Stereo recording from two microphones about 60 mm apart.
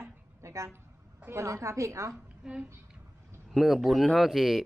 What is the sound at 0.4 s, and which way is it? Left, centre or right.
A woman's voice, right.